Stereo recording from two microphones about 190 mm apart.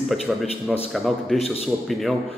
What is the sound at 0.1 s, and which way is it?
A man's voice, centre (ahead or behind).